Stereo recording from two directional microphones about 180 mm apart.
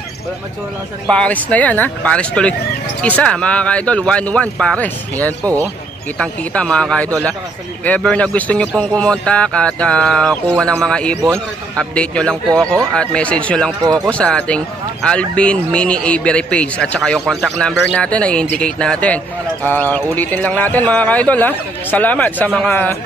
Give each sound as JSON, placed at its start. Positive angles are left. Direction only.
{"t": 1.0, "sound": "speech", "side_deg": 5}
{"t": 5.4, "sound": "speech", "side_deg": -20}
{"t": 6.1, "sound": "speech", "side_deg": 5}